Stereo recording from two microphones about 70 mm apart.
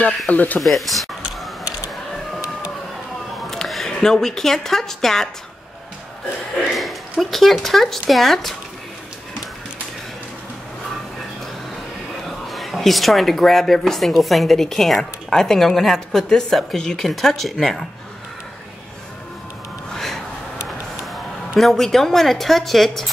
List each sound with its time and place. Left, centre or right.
0.3 s speech: left
0.6 s speech: centre
3.4 s a woman's voice: centre
6.8 s speech: centre
12.3 s speech: centre
19.9 s a sound: centre
21.5 s speech: centre